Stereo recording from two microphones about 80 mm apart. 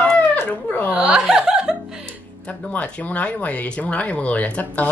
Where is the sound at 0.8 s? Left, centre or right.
Centre.